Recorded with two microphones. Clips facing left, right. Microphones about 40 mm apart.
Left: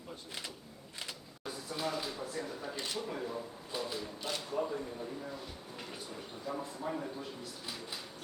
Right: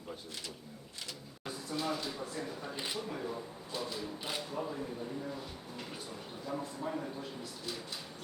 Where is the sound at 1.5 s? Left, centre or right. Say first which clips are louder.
Even; centre.